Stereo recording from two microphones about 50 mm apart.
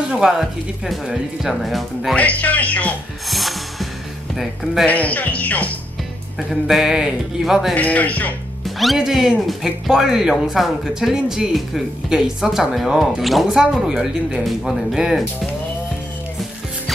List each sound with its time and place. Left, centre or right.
0.1 s speech: centre
2.1 s speech: left
3.3 s music: centre
4.8 s speech: left
6.5 s speech: centre
6.9 s speech: centre
7.7 s speech: left
8.6 s speech: centre
9.0 s speech: centre
12.9 s speech: centre
13.8 s speech: centre
14.4 s speech: centre